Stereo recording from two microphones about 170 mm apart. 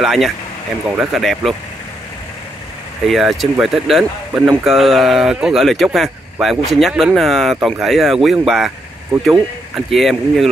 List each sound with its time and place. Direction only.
0.0 s speech: centre (ahead or behind)
3.1 s speech: centre (ahead or behind)